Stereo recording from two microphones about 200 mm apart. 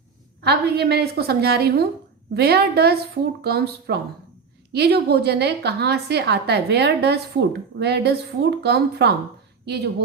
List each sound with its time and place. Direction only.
0.4 s a woman's voice: 55° right (ahead or behind)